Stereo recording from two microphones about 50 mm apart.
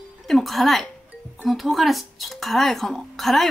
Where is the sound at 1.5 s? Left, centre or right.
Centre.